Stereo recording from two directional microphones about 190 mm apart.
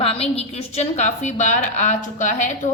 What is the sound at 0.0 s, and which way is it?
A woman's voice, 30° left (ahead or behind).